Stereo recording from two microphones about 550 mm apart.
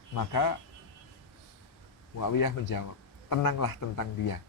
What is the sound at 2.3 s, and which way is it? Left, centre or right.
Speech, left.